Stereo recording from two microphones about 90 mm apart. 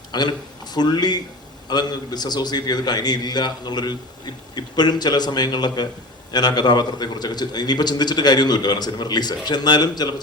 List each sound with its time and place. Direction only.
0.1 s a man's voice: 55° left (ahead or behind)